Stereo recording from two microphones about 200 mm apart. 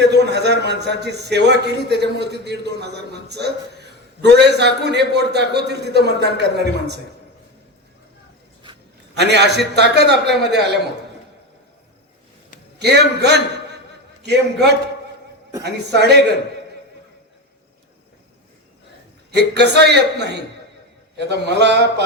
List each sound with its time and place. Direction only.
0.0 s a man's voice: 55° right (ahead or behind)
9.1 s a man's voice: 55° right (ahead or behind)
12.8 s a man's voice: 55° right (ahead or behind)
19.3 s a man's voice: 55° right (ahead or behind)